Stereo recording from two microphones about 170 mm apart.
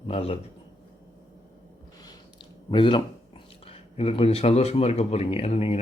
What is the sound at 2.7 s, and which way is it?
Speech, 30° left (ahead or behind).